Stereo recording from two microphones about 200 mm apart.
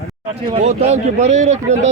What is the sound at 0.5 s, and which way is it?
Speech, 35° right (ahead or behind).